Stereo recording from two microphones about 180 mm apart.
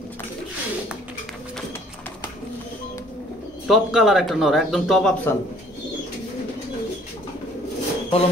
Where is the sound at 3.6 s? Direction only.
Centre (ahead or behind).